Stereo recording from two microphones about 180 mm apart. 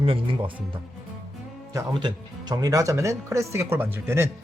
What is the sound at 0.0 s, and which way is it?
Speech, 30° right (ahead or behind).